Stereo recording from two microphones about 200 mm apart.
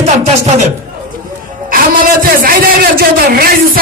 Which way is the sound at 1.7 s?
45° right (ahead or behind).